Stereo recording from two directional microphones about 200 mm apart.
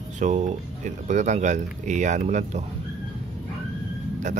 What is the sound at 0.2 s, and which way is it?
Speech, 35° right (ahead or behind).